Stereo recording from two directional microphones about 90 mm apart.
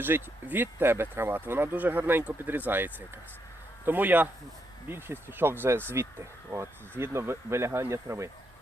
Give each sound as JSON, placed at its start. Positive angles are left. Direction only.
{"t": 0.0, "sound": "speech", "side_deg": -20}